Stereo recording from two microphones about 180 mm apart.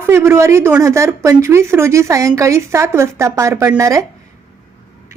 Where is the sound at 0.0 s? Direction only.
15° right (ahead or behind).